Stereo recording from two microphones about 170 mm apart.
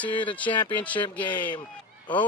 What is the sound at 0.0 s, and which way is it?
Speech, 10° left (ahead or behind).